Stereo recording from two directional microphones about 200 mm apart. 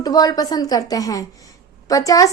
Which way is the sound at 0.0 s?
20° left (ahead or behind).